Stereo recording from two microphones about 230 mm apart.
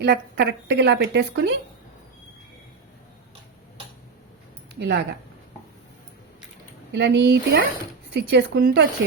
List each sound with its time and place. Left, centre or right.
0.0 s a woman's voice: right
4.7 s speech: right
6.9 s a woman's voice: right